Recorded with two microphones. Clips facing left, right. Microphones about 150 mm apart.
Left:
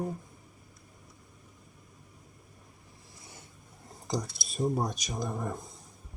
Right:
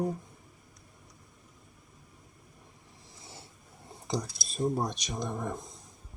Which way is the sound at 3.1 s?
25° right (ahead or behind).